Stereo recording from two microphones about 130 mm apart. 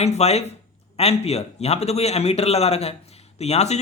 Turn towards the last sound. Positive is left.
turn(degrees=55)  # may be behind; listen again after turning